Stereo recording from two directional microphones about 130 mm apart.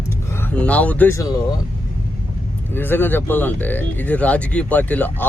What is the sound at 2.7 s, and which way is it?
Speech, 15° left (ahead or behind).